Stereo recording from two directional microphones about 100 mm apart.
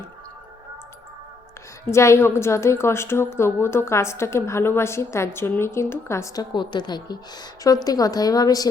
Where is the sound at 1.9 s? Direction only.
30° left (ahead or behind).